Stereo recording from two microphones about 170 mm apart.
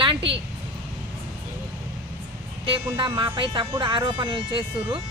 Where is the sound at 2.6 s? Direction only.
30° right (ahead or behind).